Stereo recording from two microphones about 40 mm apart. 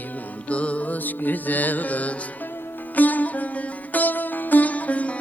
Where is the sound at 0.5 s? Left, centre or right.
Left.